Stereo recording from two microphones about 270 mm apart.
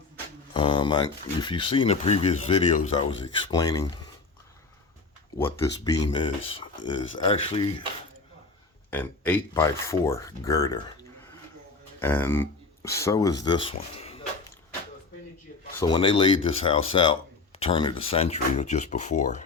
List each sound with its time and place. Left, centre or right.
0.5 s speech: centre
5.4 s speech: centre
8.9 s speech: centre
11.9 s speech: centre
15.8 s speech: centre